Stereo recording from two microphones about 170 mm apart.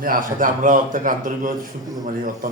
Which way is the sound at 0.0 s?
55° right (ahead or behind).